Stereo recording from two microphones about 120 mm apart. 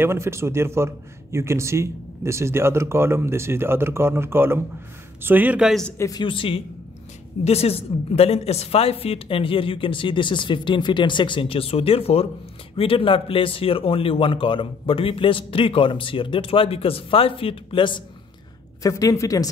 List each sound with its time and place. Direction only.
0.0 s a man's voice: 20° right (ahead or behind)
5.6 s a man's voice: centre (ahead or behind)
5.9 s speech: 25° left (ahead or behind)
6.2 s speech: 45° left (ahead or behind)
7.4 s speech: 60° left (ahead or behind)
18.8 s speech: 30° left (ahead or behind)